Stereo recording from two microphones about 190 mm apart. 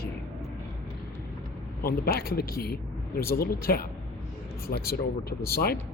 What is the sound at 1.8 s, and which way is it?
Speech, 50° left (ahead or behind).